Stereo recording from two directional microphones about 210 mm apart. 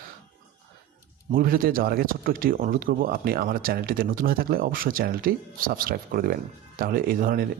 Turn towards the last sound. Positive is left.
turn(degrees=-45)  # may be behind; listen again after turning